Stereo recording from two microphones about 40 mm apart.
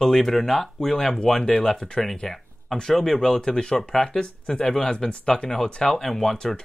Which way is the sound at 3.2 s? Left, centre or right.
Centre.